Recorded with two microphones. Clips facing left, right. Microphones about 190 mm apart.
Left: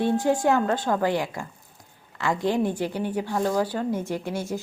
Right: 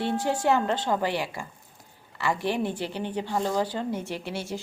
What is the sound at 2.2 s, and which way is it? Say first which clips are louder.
Speech: left 3 dB; 15° left (ahead or behind).